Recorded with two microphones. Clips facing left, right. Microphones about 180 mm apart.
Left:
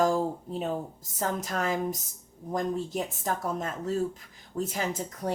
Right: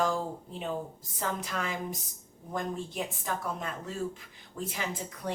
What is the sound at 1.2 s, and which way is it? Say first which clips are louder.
Speech: left 4 dB; 45° left (ahead or behind).